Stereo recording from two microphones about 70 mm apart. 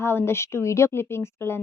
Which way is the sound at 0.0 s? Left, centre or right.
Left.